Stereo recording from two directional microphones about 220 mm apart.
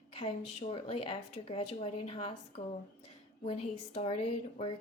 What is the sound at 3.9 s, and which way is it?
Speech, 30° left (ahead or behind).